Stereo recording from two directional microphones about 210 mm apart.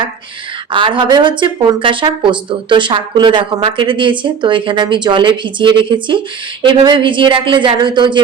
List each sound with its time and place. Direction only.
0.7 s speech: 25° right (ahead or behind)